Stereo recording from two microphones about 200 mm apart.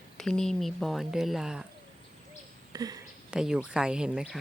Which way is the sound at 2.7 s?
20° right (ahead or behind).